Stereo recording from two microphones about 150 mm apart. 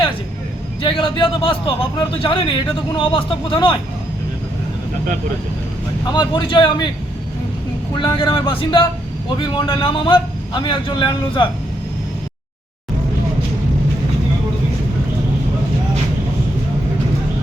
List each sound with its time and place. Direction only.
0.8 s a man's voice: 35° left (ahead or behind)
6.1 s a man's voice: 30° left (ahead or behind)
7.9 s a man's voice: 35° left (ahead or behind)